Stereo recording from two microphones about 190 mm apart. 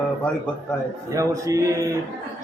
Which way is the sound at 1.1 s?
15° right (ahead or behind).